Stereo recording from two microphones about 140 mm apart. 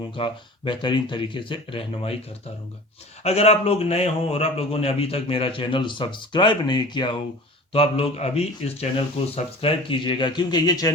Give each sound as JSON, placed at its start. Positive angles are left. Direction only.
{"t": 0.1, "sound": "speech", "side_deg": 35}
{"t": 3.2, "sound": "a man's voice", "side_deg": 50}
{"t": 7.7, "sound": "speech", "side_deg": 45}